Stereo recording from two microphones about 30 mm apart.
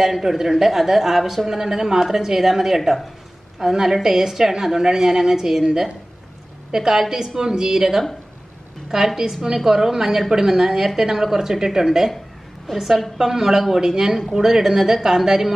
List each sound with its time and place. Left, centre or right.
0.0 s a woman's voice: centre
6.7 s a woman's voice: centre
12.7 s a woman's voice: centre
13.2 s a woman's voice: centre